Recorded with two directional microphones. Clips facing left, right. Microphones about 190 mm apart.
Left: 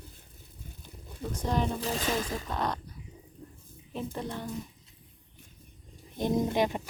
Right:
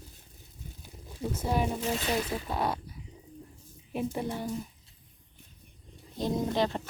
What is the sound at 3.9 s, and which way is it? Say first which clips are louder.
Speech: right 3 dB; 10° right (ahead or behind).